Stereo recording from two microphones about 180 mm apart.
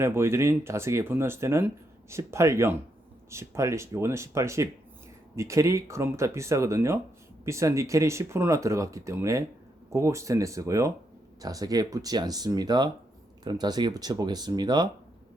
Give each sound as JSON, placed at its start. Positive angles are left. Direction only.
{"t": 0.0, "sound": "speech", "side_deg": -15}